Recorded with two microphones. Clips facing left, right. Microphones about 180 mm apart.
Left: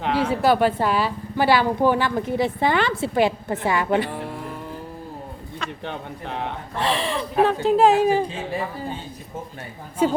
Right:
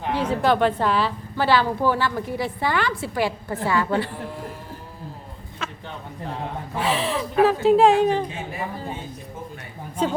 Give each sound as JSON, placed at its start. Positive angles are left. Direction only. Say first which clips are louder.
{"t": 0.2, "sound": "a woman's voice", "louder": "left 1 dB", "side_deg": 10}
{"t": 5.8, "sound": "a man's voice", "louder": "left 3 dB", "side_deg": 70}
{"t": 6.7, "sound": "speech", "louder": "even", "side_deg": -5}
{"t": 10.0, "sound": "a woman's voice", "louder": "left 3 dB", "side_deg": 10}